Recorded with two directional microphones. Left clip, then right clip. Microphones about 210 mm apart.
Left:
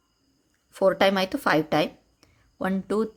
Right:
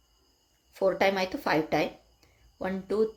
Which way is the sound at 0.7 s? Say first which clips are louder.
Left 4 dB; 40° left (ahead or behind).